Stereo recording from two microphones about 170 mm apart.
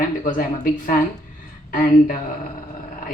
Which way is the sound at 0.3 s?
55° left (ahead or behind).